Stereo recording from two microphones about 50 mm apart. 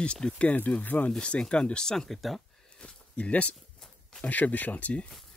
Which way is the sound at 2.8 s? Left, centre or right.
Left.